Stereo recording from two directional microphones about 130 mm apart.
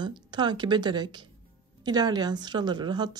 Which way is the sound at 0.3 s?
35° right (ahead or behind).